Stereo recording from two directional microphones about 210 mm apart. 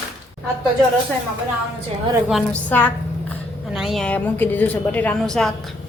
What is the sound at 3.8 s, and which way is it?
A woman's voice, centre (ahead or behind).